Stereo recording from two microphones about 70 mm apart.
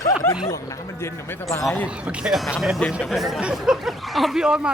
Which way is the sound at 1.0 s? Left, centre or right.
Left.